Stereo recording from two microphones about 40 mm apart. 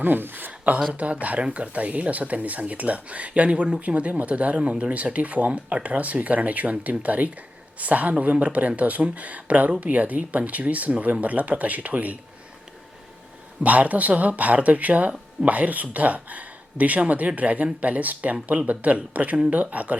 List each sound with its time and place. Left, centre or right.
0.0 s a sound: right
1.2 s speech: right
13.6 s speech: right